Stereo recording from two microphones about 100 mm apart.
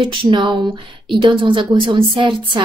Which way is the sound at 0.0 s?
55° right (ahead or behind).